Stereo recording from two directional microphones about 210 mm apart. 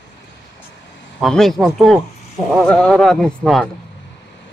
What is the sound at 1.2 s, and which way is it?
A man's voice, centre (ahead or behind).